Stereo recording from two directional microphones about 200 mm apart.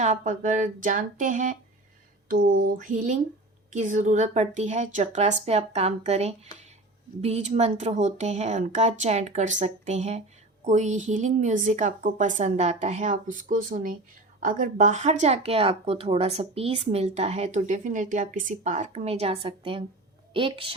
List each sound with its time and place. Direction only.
0.0 s speech: 35° right (ahead or behind)
2.2 s a sound: 45° right (ahead or behind)
3.7 s a woman's voice: 40° right (ahead or behind)